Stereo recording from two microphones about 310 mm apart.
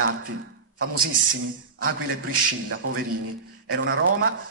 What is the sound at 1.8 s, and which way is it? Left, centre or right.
A man's voice, right.